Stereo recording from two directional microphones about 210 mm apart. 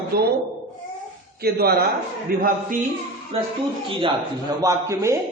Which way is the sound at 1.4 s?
45° right (ahead or behind).